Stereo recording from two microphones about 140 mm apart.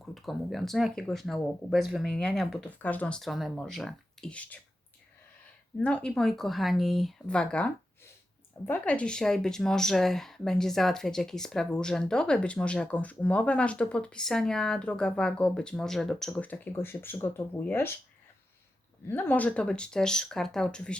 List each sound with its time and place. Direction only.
0.0 s a woman's voice: centre (ahead or behind)
2.6 s a woman's voice: 10° left (ahead or behind)
5.8 s a woman's voice: 5° left (ahead or behind)
19.0 s speech: 15° left (ahead or behind)